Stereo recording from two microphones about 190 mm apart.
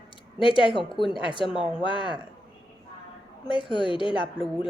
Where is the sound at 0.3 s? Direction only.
25° left (ahead or behind).